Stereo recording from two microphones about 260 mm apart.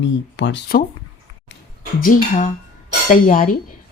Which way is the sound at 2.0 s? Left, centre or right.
Left.